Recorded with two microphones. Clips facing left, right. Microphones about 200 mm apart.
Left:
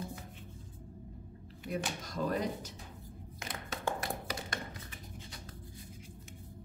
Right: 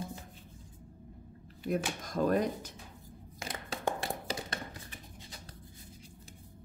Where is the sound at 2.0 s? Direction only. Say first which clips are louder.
Right 6 dB; 50° right (ahead or behind).